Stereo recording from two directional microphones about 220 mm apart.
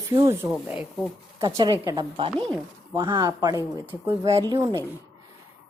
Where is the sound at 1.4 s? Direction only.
15° right (ahead or behind).